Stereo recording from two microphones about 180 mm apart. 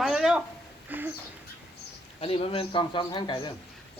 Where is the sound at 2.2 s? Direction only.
30° left (ahead or behind).